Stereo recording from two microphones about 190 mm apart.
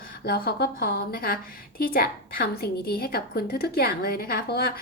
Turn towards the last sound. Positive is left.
turn(degrees=55)  # may be behind; listen again after turning